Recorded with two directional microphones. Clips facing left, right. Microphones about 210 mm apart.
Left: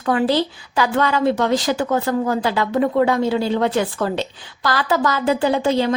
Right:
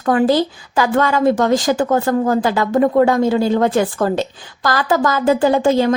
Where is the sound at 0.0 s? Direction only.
45° right (ahead or behind).